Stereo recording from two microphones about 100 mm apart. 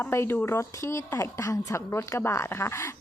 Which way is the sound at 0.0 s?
25° left (ahead or behind).